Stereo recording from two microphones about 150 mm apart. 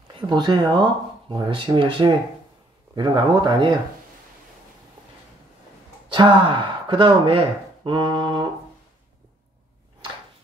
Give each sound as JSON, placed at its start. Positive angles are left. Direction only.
{"t": 0.1, "sound": "speech", "side_deg": -30}
{"t": 6.1, "sound": "speech", "side_deg": -35}